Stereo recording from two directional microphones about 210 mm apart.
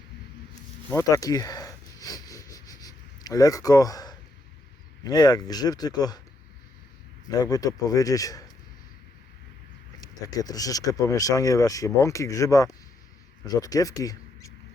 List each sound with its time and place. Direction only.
0.9 s a sound: 15° left (ahead or behind)
5.0 s speech: 20° left (ahead or behind)
7.3 s speech: 20° left (ahead or behind)
10.0 s speech: 15° left (ahead or behind)